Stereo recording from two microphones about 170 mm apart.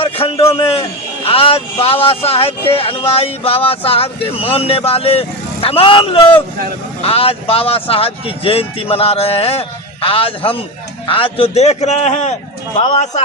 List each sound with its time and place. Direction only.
0.0 s speech: 35° left (ahead or behind)